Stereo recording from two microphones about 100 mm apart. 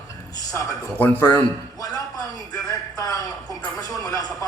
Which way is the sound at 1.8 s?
40° left (ahead or behind).